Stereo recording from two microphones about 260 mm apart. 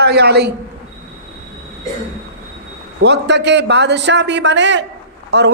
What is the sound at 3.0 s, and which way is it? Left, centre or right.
Speech, right.